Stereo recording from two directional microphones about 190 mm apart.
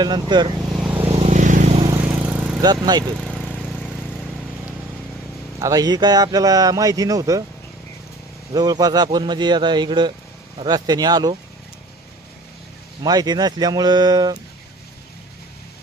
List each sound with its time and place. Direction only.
0.0 s speech: 20° right (ahead or behind)
0.9 s vehicle: 30° right (ahead or behind)
1.9 s vehicle: 15° right (ahead or behind)
3.2 s vehicle: 5° left (ahead or behind)
5.5 s speech: 20° right (ahead or behind)
8.5 s speech: 20° right (ahead or behind)
13.0 s speech: 20° right (ahead or behind)